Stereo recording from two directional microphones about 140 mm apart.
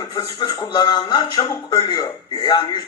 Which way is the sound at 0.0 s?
30° left (ahead or behind).